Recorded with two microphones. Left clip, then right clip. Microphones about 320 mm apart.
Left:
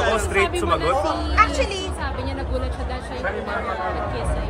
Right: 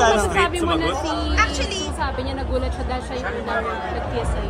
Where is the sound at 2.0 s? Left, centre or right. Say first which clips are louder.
Right 3 dB; right.